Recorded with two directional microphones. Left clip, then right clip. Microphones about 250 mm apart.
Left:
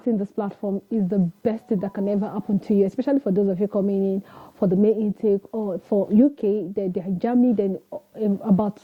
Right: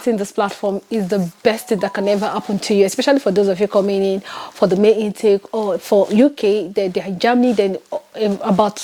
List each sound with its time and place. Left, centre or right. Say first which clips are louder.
0.0 s speech: right 8 dB; centre
5.5 s speech: right 9 dB; right
6.1 s speech: right 6 dB; centre